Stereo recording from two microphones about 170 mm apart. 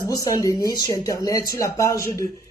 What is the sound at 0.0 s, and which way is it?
Speech, 20° left (ahead or behind).